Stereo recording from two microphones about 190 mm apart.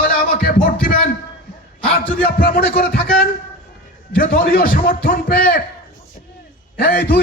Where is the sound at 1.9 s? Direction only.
50° left (ahead or behind).